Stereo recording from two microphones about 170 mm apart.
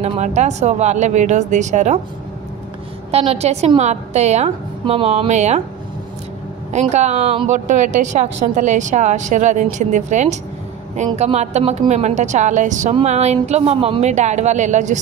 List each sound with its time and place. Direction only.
0.0 s a woman's voice: 45° right (ahead or behind)
3.1 s a woman's voice: 35° right (ahead or behind)
6.7 s a woman's voice: 40° right (ahead or behind)